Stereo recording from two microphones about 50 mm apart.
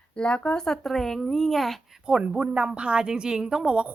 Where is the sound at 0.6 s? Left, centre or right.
Centre.